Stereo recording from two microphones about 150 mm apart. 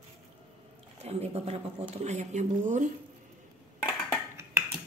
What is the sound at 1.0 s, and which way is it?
Speech, 45° right (ahead or behind).